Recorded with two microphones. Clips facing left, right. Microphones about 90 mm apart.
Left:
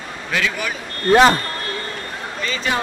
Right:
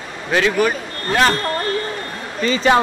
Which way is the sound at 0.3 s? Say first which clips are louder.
Right 7 dB; 40° right (ahead or behind).